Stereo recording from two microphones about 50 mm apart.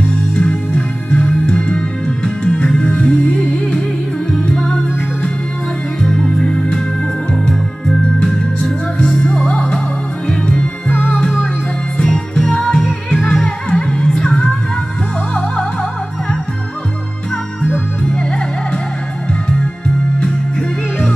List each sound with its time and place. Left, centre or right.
0.4 s music: centre
6.0 s music: centre
8.3 s music: centre
12.0 s music: centre
18.1 s music: centre